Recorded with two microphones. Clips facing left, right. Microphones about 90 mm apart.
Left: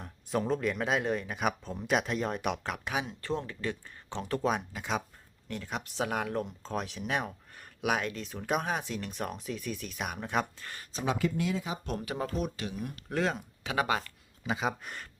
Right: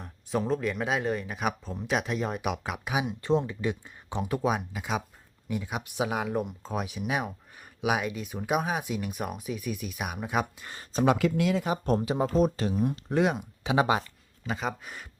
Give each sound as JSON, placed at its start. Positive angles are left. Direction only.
{"t": 0.0, "sound": "speech", "side_deg": 0}
{"t": 10.9, "sound": "speech", "side_deg": -65}
{"t": 11.9, "sound": "speech", "side_deg": -25}
{"t": 12.4, "sound": "speech", "side_deg": -35}
{"t": 14.4, "sound": "speech", "side_deg": 0}